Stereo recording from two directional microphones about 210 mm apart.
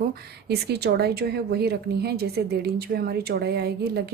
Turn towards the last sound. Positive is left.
turn(degrees=-50)  # may be behind; listen again after turning